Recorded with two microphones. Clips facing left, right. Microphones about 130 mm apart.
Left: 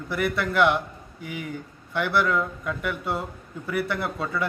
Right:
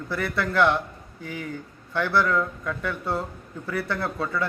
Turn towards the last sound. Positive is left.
turn(degrees=15)  # may be behind; listen again after turning